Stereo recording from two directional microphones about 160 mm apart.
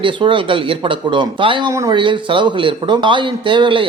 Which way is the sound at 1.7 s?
20° right (ahead or behind).